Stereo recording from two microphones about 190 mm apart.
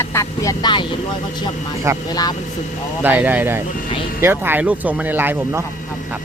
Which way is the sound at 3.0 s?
10° right (ahead or behind).